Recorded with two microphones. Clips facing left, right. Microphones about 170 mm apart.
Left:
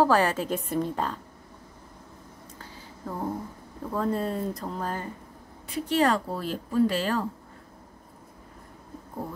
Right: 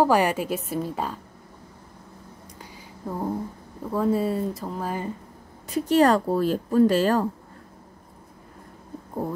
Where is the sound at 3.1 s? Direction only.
15° right (ahead or behind).